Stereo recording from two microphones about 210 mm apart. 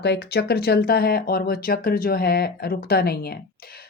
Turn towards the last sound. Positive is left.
turn(degrees=50)  # may be behind; listen again after turning